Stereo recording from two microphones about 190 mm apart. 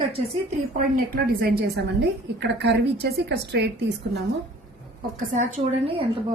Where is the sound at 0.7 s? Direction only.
45° right (ahead or behind); by 4.2 s 60° right (ahead or behind).